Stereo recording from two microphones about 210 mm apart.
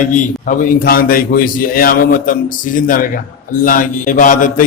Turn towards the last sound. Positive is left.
turn(degrees=40)  # may be behind; listen again after turning